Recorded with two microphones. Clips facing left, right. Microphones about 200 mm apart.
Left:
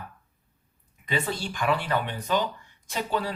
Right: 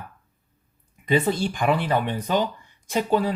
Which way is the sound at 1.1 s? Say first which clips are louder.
Right 8 dB; 50° right (ahead or behind).